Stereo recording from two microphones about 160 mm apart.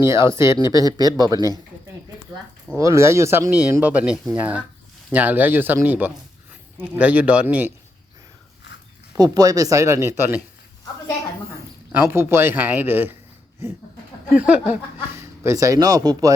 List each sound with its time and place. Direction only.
0.0 s speech: 15° right (ahead or behind)
2.7 s speech: 20° right (ahead or behind)
9.1 s speech: 25° right (ahead or behind)
11.9 s speech: 15° right (ahead or behind)
14.3 s speech: 10° right (ahead or behind)